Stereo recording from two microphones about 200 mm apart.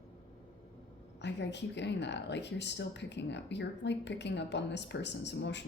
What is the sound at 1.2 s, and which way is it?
Speech, 60° left (ahead or behind).